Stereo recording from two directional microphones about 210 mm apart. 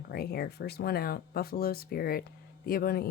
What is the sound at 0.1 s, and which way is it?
Speech, 45° left (ahead or behind).